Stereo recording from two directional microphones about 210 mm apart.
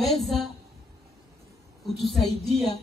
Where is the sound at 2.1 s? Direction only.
Centre (ahead or behind).